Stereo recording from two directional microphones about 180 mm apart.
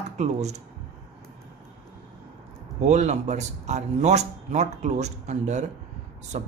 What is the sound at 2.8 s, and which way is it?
Speech, 40° right (ahead or behind).